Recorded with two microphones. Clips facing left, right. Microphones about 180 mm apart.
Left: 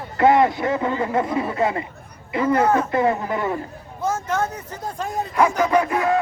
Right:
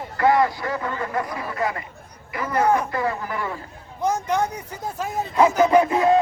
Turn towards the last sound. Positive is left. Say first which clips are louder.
# right 2 dB
turn(degrees=-25)  # may be behind; listen again after turning